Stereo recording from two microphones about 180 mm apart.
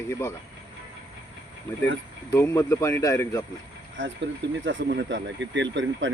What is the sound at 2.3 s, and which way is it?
Speech, 15° left (ahead or behind).